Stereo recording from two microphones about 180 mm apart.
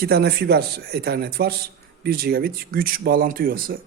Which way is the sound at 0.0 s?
65° right (ahead or behind).